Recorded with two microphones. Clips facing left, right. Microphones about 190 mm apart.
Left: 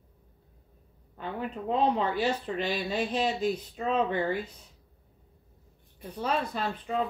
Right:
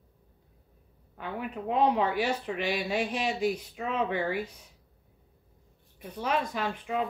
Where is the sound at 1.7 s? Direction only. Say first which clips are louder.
Right 1 dB; 10° right (ahead or behind).